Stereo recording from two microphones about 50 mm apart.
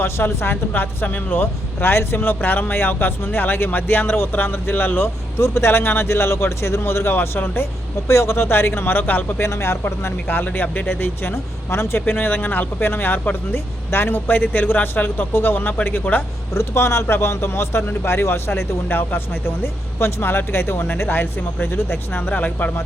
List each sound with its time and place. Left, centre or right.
0.0 s speech: left
0.7 s speech: left
5.0 s speech: left
8.0 s speech: left
9.4 s speech: left
10.0 s speech: left
12.0 s speech: left
16.6 s speech: left